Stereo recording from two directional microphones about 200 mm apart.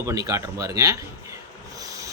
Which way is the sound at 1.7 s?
15° right (ahead or behind).